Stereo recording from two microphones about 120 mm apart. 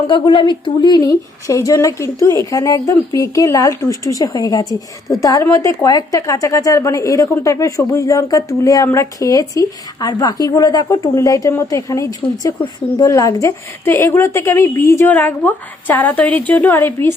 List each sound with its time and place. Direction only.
0.1 s a woman's voice: 40° left (ahead or behind); by 17.2 s 20° left (ahead or behind)